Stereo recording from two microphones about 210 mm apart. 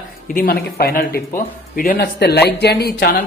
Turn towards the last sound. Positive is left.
turn(degrees=45)  # may be behind; listen again after turning